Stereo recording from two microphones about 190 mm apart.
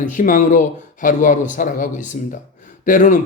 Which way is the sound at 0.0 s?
45° left (ahead or behind).